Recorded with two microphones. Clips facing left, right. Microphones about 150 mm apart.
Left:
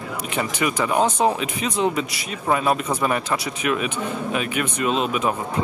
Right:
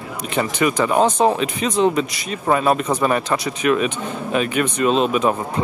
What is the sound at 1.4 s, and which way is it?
Speech, 10° left (ahead or behind).